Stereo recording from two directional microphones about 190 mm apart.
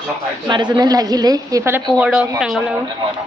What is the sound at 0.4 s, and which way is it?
A woman's voice, 25° right (ahead or behind).